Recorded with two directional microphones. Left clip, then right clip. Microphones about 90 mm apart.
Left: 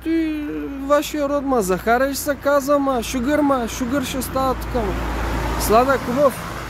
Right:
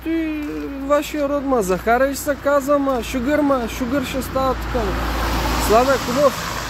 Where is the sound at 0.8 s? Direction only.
40° left (ahead or behind).